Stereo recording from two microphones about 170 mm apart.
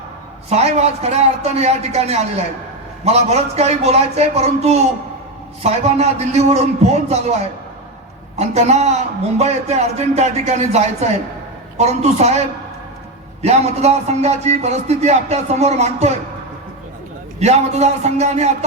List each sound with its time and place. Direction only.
0.5 s a man's voice: 40° right (ahead or behind)
8.4 s a man's voice: 40° right (ahead or behind)
17.4 s a man's voice: 40° right (ahead or behind)